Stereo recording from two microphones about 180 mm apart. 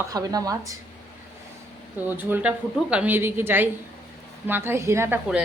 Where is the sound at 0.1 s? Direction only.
20° right (ahead or behind).